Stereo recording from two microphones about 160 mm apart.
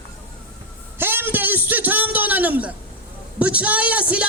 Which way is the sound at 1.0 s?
15° right (ahead or behind).